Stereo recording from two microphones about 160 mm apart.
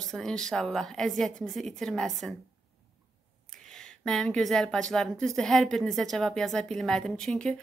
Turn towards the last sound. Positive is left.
turn(degrees=5)  # may be behind; listen again after turning